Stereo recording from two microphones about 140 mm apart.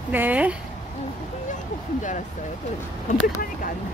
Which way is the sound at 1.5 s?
65° left (ahead or behind).